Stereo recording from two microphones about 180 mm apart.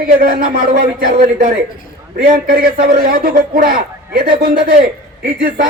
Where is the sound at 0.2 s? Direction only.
55° right (ahead or behind).